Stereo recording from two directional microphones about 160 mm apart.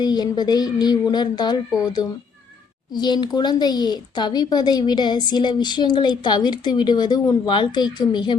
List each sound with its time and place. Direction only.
0.0 s speech: 25° left (ahead or behind)